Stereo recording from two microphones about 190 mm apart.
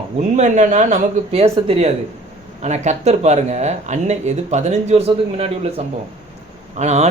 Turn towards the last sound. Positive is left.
turn(degrees=-35)  # may be behind; listen again after turning